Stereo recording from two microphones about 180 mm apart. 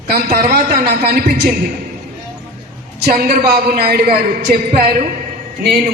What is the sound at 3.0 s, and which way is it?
A man's voice, 55° right (ahead or behind).